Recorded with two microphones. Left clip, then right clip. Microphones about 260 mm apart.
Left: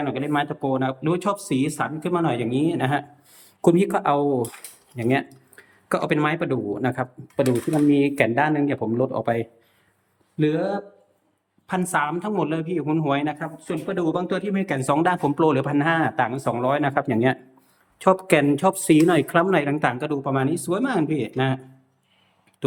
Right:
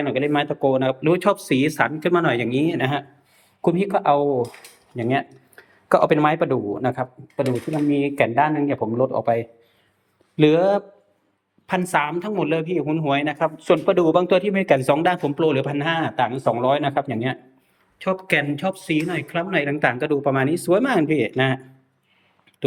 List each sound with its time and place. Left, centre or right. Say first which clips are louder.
0.0 s speech: right 3 dB; centre
3.3 s speech: left 2 dB; centre
10.3 s speech: right 7 dB; centre